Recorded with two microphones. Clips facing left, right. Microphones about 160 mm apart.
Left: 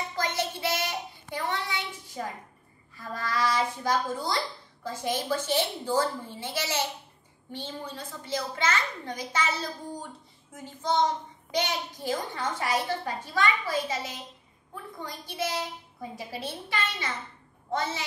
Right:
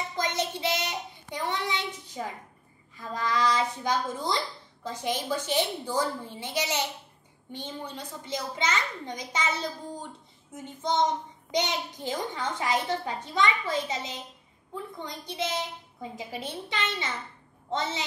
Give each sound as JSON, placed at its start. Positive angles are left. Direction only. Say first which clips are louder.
{"t": 0.1, "sound": "child singing", "louder": "right 1 dB", "side_deg": -20}
{"t": 3.2, "sound": "a child's voice", "louder": "right 1 dB", "side_deg": -20}